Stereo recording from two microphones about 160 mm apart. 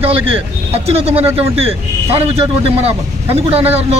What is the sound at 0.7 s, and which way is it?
A man's voice, 35° right (ahead or behind).